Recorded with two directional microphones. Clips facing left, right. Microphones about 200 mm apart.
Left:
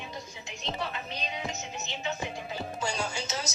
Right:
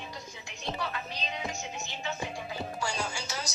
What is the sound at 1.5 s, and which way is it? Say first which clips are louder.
Music: left 1 dB; 20° left (ahead or behind).